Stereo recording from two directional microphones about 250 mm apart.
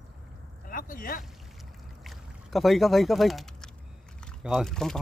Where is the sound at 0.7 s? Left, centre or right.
Left.